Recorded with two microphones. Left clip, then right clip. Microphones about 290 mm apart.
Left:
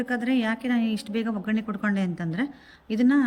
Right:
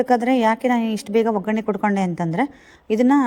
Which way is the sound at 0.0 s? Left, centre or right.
Centre.